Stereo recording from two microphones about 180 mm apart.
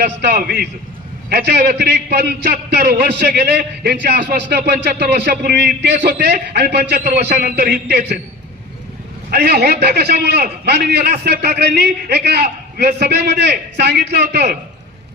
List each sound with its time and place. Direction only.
0.0 s a man's voice: 60° right (ahead or behind)
9.3 s a man's voice: 65° right (ahead or behind)